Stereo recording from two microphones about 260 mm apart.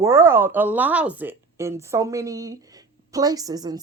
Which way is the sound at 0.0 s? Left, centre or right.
Centre.